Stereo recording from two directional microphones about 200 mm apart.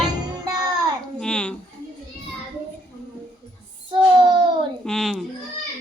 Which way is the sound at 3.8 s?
25° right (ahead or behind).